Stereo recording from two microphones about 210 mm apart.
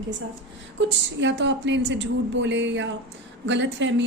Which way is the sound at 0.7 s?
60° right (ahead or behind).